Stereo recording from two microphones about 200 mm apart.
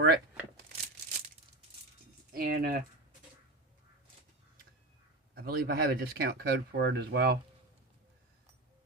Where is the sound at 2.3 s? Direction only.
50° right (ahead or behind).